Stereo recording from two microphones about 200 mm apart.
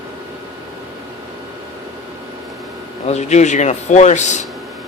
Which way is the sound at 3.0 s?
35° left (ahead or behind).